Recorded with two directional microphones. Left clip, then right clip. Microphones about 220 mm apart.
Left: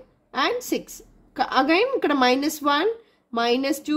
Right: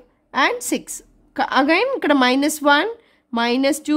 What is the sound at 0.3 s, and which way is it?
A woman's voice, 35° right (ahead or behind).